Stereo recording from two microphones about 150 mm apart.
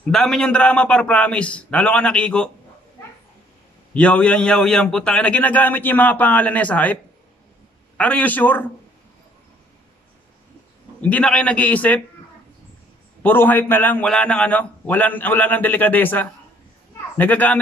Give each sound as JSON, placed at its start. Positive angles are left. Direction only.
{"t": 0.0, "sound": "a man's voice", "side_deg": 5}
{"t": 3.9, "sound": "a man's voice", "side_deg": 10}
{"t": 8.0, "sound": "a man's voice", "side_deg": 10}
{"t": 11.0, "sound": "a man's voice", "side_deg": 10}
{"t": 13.2, "sound": "a man's voice", "side_deg": 15}